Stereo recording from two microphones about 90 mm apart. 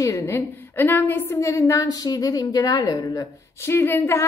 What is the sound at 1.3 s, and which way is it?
A woman's voice, 35° left (ahead or behind).